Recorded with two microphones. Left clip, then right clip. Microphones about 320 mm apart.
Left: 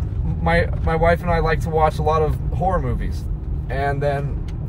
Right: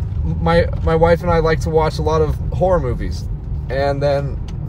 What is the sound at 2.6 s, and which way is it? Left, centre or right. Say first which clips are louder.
Speech: right 6 dB; centre.